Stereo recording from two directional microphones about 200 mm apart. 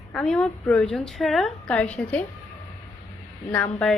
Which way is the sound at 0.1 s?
5° left (ahead or behind).